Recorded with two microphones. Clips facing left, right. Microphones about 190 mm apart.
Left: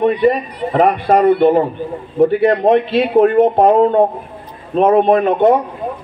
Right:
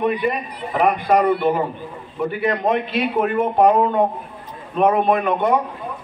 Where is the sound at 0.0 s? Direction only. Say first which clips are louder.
Left 7 dB; 35° left (ahead or behind).